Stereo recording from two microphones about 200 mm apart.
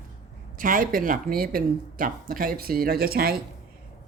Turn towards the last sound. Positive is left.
turn(degrees=-50)  # may be behind; listen again after turning